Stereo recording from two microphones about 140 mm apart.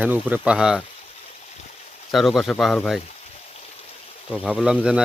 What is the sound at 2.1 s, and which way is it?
Speech, centre (ahead or behind).